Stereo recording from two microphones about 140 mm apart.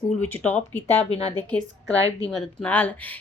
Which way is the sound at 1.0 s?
45° left (ahead or behind).